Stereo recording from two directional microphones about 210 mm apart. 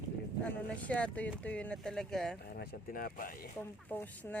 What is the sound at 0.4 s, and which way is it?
Speech, 5° left (ahead or behind).